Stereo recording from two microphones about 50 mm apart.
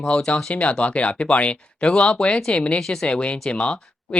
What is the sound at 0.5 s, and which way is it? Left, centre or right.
Speech, left.